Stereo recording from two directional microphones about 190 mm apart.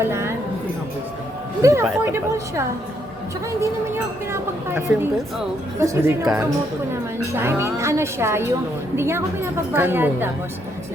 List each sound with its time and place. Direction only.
0.0 s a woman's voice: 15° right (ahead or behind)
1.6 s a woman's voice: 15° right (ahead or behind)